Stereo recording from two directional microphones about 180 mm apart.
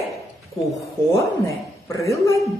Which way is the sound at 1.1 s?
15° left (ahead or behind).